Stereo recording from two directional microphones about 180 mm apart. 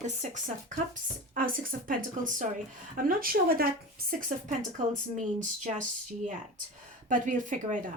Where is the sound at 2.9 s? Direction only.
50° right (ahead or behind).